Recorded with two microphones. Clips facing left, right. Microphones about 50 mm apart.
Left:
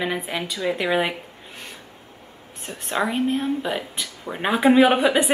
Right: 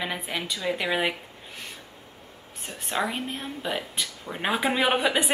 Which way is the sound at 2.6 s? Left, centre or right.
Centre.